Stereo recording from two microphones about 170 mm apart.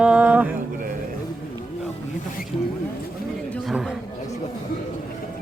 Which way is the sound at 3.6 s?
Centre (ahead or behind).